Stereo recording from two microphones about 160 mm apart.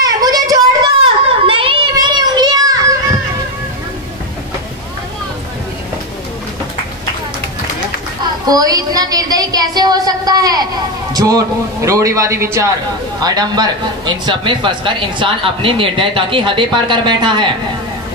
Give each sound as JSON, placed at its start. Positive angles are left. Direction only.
{"t": 0.0, "sound": "a sound", "side_deg": -25}
{"t": 1.4, "sound": "children playing", "side_deg": -35}
{"t": 8.5, "sound": "a woman's voice", "side_deg": -25}